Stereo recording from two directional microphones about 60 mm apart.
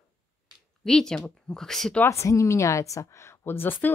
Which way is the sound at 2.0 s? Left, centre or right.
Left.